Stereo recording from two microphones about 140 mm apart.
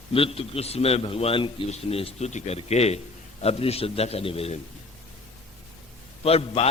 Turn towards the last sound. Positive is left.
turn(degrees=45)  # may be behind; listen again after turning